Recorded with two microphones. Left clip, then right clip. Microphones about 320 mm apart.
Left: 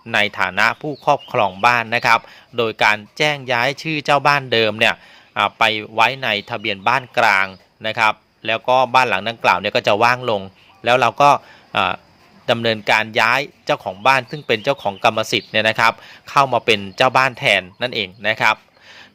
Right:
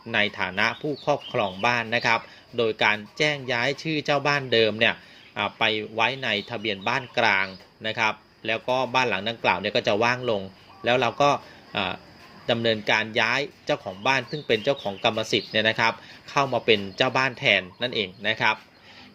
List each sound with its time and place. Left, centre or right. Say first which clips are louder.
0.1 s speech: left 7 dB; left